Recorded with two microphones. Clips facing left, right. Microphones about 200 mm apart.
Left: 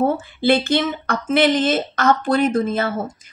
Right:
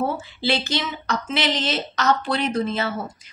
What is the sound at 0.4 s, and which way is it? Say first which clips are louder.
Speech: left 8 dB; 55° left (ahead or behind).